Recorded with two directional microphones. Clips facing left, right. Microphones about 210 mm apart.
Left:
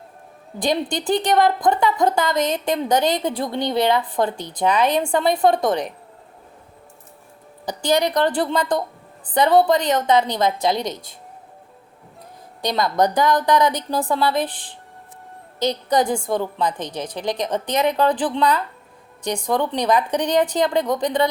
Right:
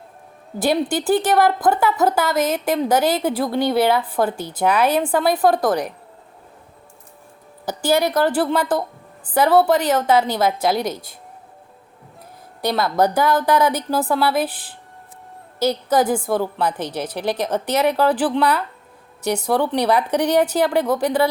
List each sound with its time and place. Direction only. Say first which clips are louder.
0.6 s speech: right 3 dB; 5° right (ahead or behind)
7.6 s a woman's voice: right 1 dB; 5° right (ahead or behind)
12.6 s a woman's voice: right 1 dB; 5° right (ahead or behind)